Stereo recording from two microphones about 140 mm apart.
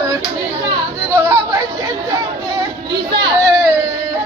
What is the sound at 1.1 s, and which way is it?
Chatter, 20° right (ahead or behind).